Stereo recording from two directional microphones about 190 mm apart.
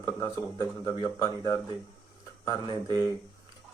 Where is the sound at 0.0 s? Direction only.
15° left (ahead or behind).